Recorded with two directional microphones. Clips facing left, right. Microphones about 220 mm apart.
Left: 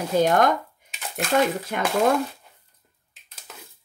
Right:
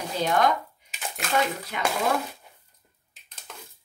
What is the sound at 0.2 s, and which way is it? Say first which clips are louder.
Speech: left 3 dB; 50° left (ahead or behind).